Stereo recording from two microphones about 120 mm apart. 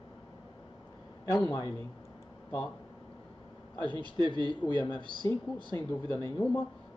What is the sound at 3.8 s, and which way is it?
A man's voice, 40° right (ahead or behind).